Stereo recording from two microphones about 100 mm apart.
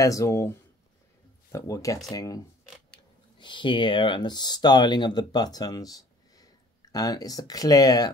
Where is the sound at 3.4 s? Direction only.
55° left (ahead or behind).